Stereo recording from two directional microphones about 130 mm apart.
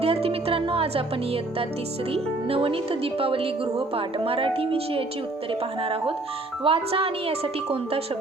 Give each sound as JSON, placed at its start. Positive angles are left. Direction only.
{"t": 0.0, "sound": "a woman's voice", "side_deg": -50}